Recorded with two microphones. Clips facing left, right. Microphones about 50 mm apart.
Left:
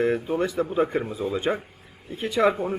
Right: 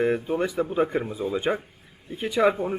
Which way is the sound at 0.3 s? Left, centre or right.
Centre.